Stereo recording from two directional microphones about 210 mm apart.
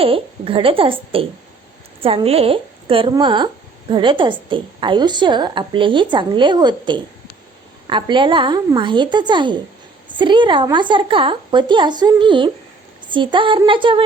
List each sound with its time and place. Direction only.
0.0 s speech: 25° right (ahead or behind)